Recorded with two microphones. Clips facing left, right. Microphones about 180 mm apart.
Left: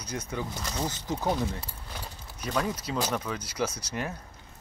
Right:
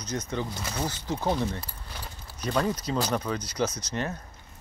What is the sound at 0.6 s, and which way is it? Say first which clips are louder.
Speech: right 1 dB; 5° right (ahead or behind).